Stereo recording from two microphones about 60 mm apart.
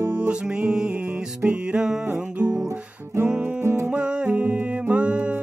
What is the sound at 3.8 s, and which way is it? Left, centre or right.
Music, centre.